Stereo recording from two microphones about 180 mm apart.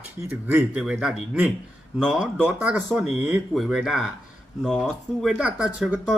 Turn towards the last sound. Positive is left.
turn(degrees=0)  # may be behind; listen again after turning